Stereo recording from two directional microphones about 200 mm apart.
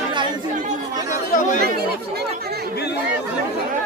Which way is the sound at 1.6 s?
55° right (ahead or behind).